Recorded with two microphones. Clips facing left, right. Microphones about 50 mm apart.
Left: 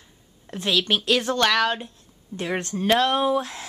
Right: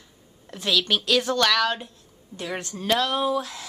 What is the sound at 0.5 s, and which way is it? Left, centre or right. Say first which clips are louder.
A woman's voice: left 1 dB; left.